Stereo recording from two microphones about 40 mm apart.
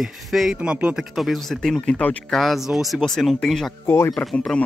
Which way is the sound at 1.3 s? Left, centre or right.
Centre.